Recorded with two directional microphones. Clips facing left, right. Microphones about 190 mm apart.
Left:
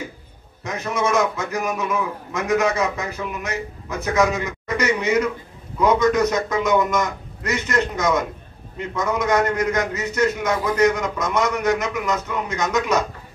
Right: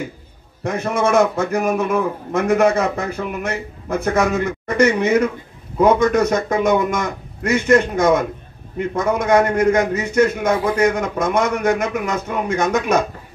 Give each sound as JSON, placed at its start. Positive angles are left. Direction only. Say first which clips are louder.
{"t": 0.7, "sound": "a man's voice", "louder": "right 4 dB", "side_deg": -50}